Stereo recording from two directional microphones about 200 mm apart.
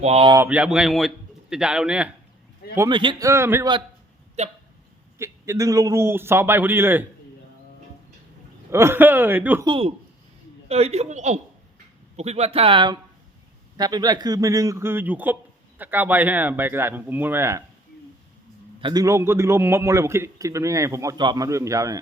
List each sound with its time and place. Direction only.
0.0 s a man's voice: 30° right (ahead or behind)
0.3 s a man's voice: 5° right (ahead or behind)
2.7 s a man's voice: 20° right (ahead or behind)
4.4 s a man's voice: 35° right (ahead or behind)
5.1 s a man's voice: 15° right (ahead or behind)
8.7 s a man's voice: 10° right (ahead or behind)
9.6 s a man's voice: 25° right (ahead or behind)
18.8 s a man's voice: 20° right (ahead or behind)